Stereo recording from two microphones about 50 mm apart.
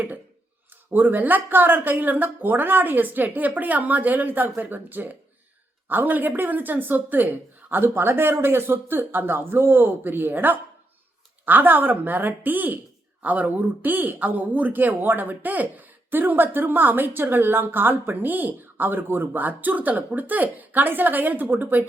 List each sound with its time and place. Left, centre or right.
0.9 s speech: right